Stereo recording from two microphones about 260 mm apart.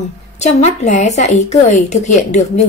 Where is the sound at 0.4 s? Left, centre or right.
Left.